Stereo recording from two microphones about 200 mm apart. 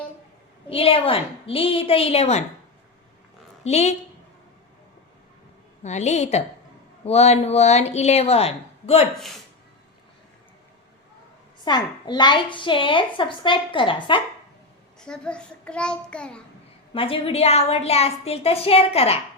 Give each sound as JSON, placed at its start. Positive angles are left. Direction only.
{"t": 0.7, "sound": "a woman's voice", "side_deg": 30}
{"t": 3.6, "sound": "a woman's voice", "side_deg": 35}
{"t": 5.8, "sound": "a woman's voice", "side_deg": 35}
{"t": 11.6, "sound": "a woman's voice", "side_deg": 20}
{"t": 15.0, "sound": "a child's voice", "side_deg": 5}
{"t": 16.9, "sound": "a woman's voice", "side_deg": 25}